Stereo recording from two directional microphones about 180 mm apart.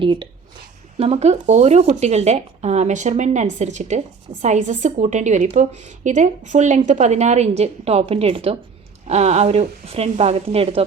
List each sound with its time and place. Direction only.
0.0 s speech: 25° right (ahead or behind)